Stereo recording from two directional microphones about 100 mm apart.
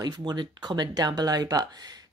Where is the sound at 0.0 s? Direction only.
45° right (ahead or behind).